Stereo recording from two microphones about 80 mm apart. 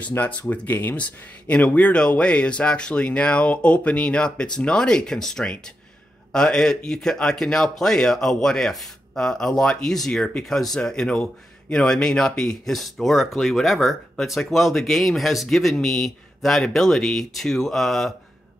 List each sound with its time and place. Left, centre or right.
0.0 s speech: centre